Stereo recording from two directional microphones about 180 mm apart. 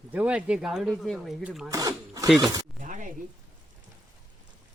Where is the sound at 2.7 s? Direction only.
45° right (ahead or behind).